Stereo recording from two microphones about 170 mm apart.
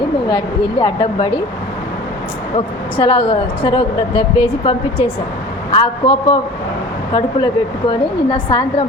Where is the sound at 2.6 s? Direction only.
35° left (ahead or behind).